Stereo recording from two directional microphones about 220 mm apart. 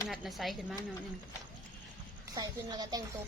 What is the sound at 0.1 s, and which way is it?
Speech, centre (ahead or behind).